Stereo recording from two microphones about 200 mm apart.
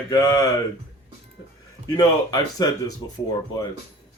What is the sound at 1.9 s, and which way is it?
Speech, 20° left (ahead or behind).